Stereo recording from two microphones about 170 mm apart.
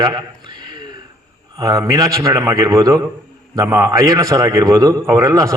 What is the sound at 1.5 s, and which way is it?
A man's voice, 20° right (ahead or behind).